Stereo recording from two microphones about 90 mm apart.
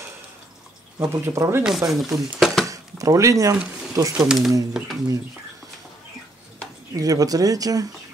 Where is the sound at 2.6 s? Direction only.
40° right (ahead or behind).